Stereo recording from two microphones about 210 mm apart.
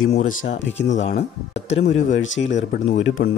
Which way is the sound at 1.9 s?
65° left (ahead or behind).